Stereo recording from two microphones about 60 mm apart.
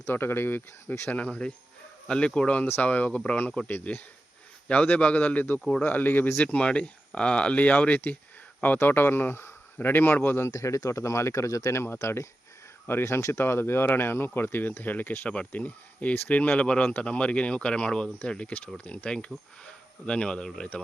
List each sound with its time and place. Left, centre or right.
0.1 s speech: left
1.1 s speech: centre
6.4 s speech: left
8.8 s speech: left
10.6 s speech: left
11.7 s speech: left; by 18.1 s centre
18.5 s speech: left